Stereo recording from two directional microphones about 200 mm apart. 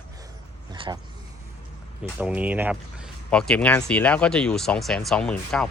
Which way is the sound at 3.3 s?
5° left (ahead or behind).